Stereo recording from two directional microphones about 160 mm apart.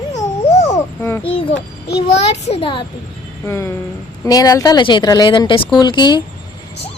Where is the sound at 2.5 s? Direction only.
35° left (ahead or behind).